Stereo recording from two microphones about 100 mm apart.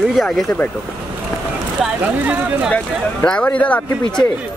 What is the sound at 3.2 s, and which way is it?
Speech, 10° left (ahead or behind).